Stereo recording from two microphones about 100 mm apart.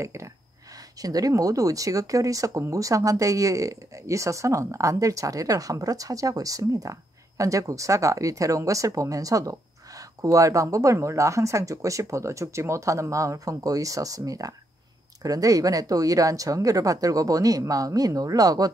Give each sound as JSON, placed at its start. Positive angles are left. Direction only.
{"t": 0.0, "sound": "speech", "side_deg": -30}